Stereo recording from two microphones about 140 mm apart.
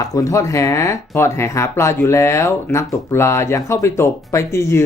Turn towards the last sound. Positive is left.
turn(degrees=20)  # may be behind; listen again after turning